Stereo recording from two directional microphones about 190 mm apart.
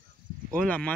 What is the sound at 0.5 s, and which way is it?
Speech, 5° left (ahead or behind).